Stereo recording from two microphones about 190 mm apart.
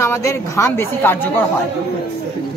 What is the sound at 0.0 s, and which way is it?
Speech, 15° left (ahead or behind).